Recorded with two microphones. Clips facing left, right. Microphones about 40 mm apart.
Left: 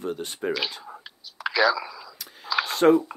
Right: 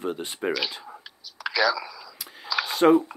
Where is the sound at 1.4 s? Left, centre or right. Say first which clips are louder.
Left 2 dB; left.